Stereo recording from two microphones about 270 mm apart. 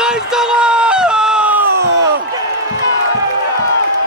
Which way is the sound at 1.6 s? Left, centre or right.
Right.